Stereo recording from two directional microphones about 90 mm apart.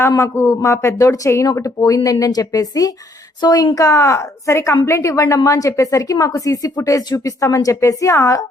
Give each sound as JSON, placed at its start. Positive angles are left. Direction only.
{"t": 0.2, "sound": "a woman's voice", "side_deg": 30}
{"t": 3.8, "sound": "a woman's voice", "side_deg": 35}